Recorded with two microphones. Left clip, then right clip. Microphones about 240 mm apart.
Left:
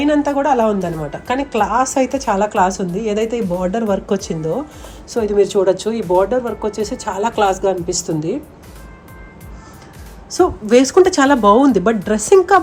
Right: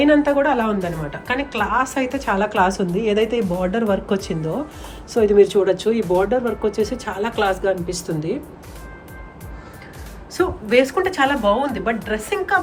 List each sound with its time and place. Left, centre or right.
0.0 s a woman's voice: centre
10.3 s a woman's voice: centre